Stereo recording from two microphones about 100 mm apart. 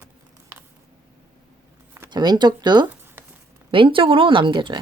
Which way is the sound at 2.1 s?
45° right (ahead or behind).